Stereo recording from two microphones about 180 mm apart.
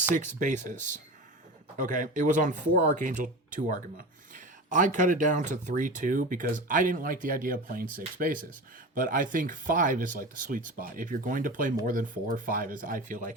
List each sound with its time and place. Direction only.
0.1 s speech: 45° right (ahead or behind)